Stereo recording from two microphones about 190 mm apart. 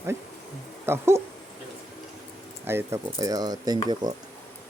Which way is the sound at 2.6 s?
10° right (ahead or behind).